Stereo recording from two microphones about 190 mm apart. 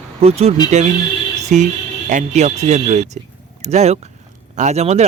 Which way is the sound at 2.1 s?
40° right (ahead or behind).